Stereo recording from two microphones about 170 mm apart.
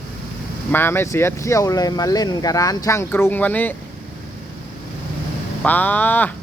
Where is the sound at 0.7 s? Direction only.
15° left (ahead or behind).